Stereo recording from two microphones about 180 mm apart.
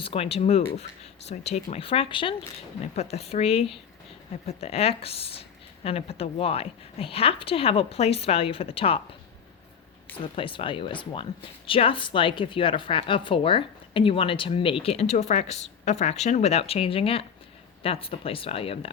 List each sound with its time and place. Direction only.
0.0 s speech: 30° left (ahead or behind)
10.3 s speech: 30° left (ahead or behind)